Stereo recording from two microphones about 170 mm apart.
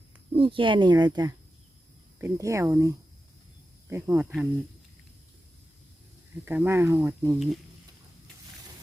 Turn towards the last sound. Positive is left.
turn(degrees=-15)  # may be behind; listen again after turning